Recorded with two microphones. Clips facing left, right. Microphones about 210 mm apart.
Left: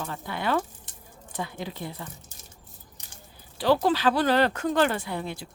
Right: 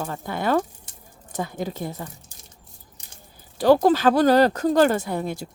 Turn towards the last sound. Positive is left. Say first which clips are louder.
# right 6 dB
turn(degrees=-45)  # may be behind; listen again after turning